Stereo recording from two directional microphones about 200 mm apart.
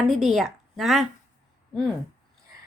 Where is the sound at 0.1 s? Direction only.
Centre (ahead or behind).